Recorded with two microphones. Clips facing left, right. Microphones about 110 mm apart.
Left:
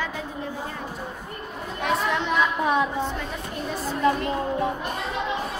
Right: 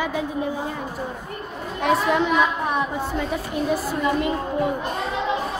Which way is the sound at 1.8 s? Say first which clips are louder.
Right 5 dB; 5° right (ahead or behind).